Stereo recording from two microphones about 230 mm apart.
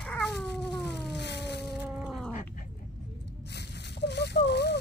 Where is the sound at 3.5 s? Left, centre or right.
Left.